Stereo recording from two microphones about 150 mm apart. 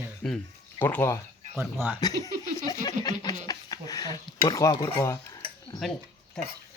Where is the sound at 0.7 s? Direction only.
15° left (ahead or behind).